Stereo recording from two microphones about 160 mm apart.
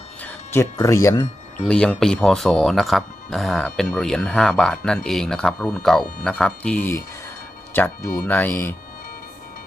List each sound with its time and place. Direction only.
0.5 s speech: 20° left (ahead or behind)
1.6 s speech: 5° left (ahead or behind)